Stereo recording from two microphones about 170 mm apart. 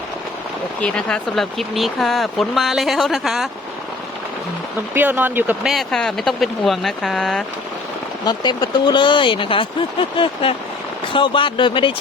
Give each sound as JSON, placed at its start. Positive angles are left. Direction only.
{"t": 0.8, "sound": "speech", "side_deg": 5}
{"t": 4.9, "sound": "speech", "side_deg": -10}
{"t": 5.7, "sound": "speech", "side_deg": 5}
{"t": 8.2, "sound": "speech", "side_deg": 25}